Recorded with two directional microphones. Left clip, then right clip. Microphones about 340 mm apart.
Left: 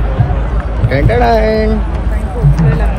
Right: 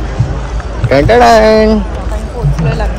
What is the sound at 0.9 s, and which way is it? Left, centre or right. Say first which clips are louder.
Speech: right 6 dB; right.